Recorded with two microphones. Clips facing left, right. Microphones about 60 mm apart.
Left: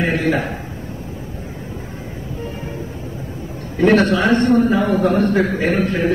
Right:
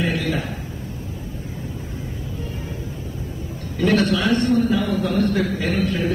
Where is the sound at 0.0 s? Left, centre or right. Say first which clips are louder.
Left 5 dB; left.